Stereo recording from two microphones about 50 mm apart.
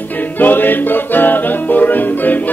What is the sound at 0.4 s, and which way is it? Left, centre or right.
Music, left.